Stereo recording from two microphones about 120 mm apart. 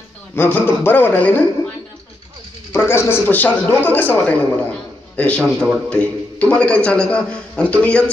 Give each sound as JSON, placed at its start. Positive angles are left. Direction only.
{"t": 0.4, "sound": "a man's voice", "side_deg": 15}
{"t": 2.7, "sound": "a man's voice", "side_deg": 20}